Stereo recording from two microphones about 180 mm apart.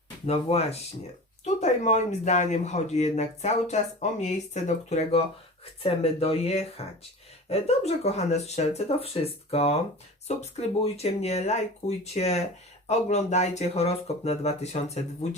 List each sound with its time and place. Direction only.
0.3 s speech: 35° left (ahead or behind)